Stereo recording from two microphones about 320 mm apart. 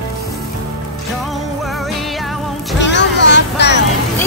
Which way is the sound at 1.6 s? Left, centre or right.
Centre.